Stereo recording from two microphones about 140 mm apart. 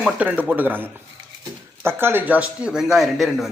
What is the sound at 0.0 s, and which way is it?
A man's voice, 10° right (ahead or behind).